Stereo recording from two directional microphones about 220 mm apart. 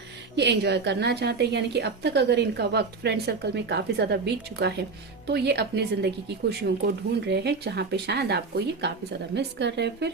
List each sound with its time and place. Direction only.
0.3 s a woman's voice: 50° right (ahead or behind)